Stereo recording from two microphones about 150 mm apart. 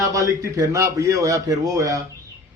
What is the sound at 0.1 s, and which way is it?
A man's voice, 20° right (ahead or behind).